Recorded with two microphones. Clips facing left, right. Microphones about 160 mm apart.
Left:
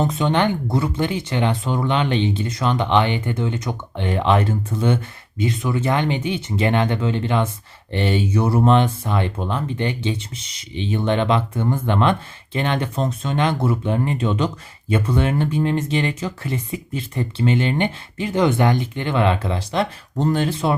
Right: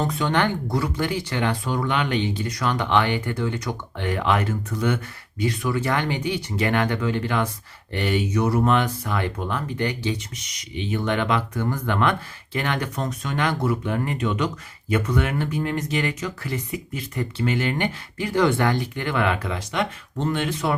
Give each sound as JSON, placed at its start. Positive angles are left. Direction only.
{"t": 0.0, "sound": "speech", "side_deg": 20}